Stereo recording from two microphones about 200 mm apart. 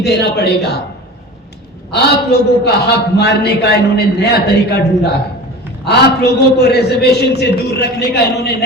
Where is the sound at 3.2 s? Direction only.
55° left (ahead or behind).